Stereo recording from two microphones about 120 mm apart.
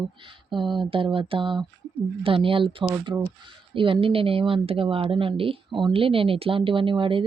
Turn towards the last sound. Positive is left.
turn(degrees=-45)  # may be behind; listen again after turning